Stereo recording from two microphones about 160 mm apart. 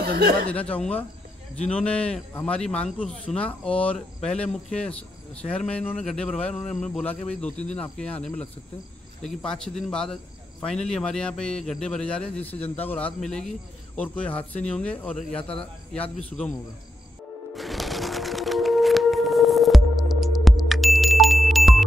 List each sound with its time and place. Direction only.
0.5 s a man's voice: 10° left (ahead or behind)
15.1 s speech: 35° left (ahead or behind)
15.5 s a man's voice: 5° left (ahead or behind)
17.6 s music: centre (ahead or behind)